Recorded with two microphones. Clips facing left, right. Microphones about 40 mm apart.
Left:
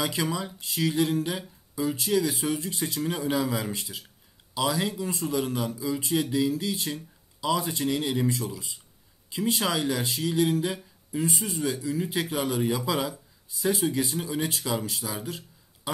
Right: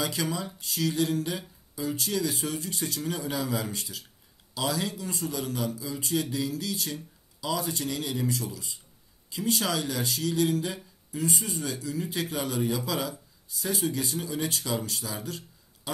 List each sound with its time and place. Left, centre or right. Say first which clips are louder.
0.0 s speech: left 2 dB; left
11.5 s speech: left 4 dB; centre